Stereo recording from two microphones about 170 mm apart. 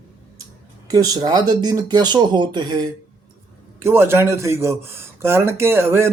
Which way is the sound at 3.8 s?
15° right (ahead or behind).